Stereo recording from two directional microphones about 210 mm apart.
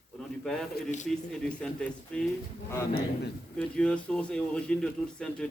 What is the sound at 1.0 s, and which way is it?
Speech, 5° left (ahead or behind).